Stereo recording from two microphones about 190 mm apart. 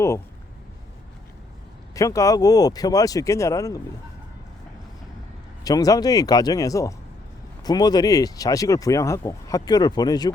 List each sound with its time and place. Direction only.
2.0 s speech: 15° left (ahead or behind)
5.6 s speech: 20° left (ahead or behind)